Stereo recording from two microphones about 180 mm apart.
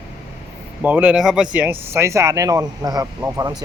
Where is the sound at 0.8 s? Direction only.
10° right (ahead or behind).